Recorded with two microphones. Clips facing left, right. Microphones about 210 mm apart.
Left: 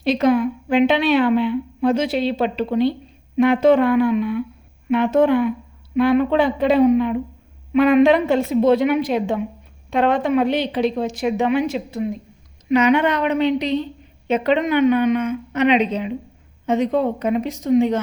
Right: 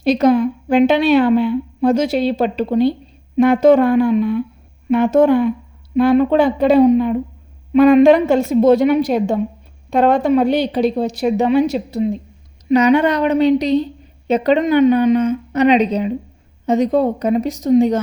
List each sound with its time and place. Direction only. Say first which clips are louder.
0.0 s a woman's voice: right 3 dB; 40° right (ahead or behind)